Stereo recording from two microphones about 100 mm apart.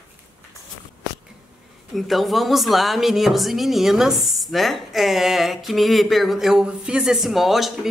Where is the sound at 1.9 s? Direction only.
Centre (ahead or behind).